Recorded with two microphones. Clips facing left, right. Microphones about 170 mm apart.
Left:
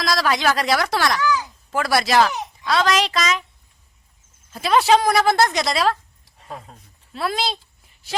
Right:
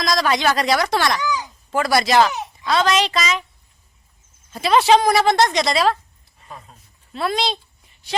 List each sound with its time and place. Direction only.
0.0 s a woman's voice: 5° left (ahead or behind)
1.2 s a sound: 20° right (ahead or behind)
1.7 s speech: centre (ahead or behind)
4.5 s speech: centre (ahead or behind)
7.1 s speech: 5° left (ahead or behind)